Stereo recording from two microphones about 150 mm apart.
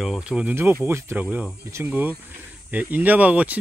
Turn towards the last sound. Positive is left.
turn(degrees=-10)  # may be behind; listen again after turning